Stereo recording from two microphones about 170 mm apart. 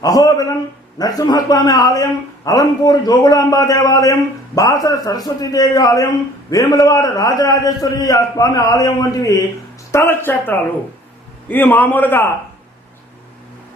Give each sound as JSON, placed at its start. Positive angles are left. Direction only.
{"t": 0.0, "sound": "a man's voice", "side_deg": 20}